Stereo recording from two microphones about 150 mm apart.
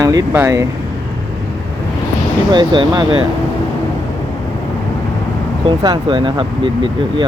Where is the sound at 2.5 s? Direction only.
30° right (ahead or behind).